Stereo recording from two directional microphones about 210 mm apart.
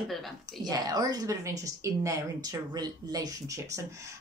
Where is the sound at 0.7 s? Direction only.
20° right (ahead or behind).